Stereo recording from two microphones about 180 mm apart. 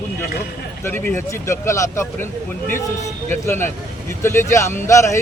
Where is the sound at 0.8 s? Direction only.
10° left (ahead or behind).